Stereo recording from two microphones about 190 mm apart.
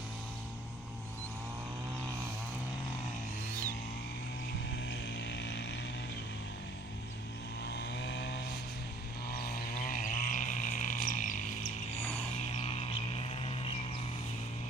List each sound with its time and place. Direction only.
4.9 s vehicle: 65° left (ahead or behind)
7.6 s chainsaw: 60° left (ahead or behind)
9.3 s a sound: 50° left (ahead or behind)
12.5 s music: 30° left (ahead or behind)